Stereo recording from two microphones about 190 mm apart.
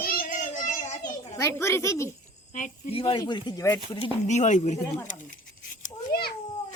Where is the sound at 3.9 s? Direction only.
35° left (ahead or behind).